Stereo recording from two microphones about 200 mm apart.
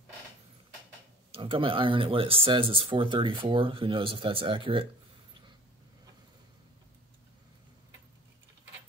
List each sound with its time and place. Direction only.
1.3 s speech: 25° right (ahead or behind)